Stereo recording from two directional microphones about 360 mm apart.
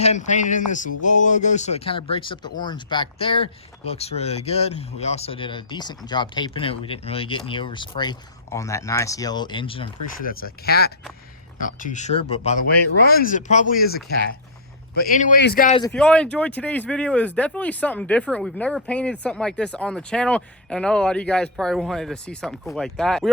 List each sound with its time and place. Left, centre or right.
0.0 s speech: centre
15.0 s speech: left
15.9 s speech: centre